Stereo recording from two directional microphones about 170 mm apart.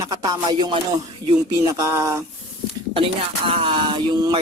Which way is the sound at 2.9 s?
30° right (ahead or behind).